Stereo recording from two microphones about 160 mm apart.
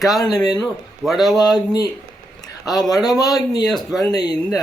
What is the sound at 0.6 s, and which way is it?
Speech, centre (ahead or behind).